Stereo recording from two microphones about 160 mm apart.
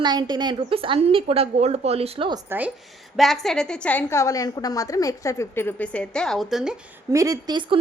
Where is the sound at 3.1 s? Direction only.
Centre (ahead or behind).